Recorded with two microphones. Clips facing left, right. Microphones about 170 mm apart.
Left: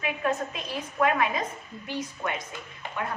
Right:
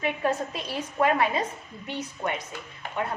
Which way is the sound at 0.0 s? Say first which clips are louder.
Right 2 dB; 30° right (ahead or behind).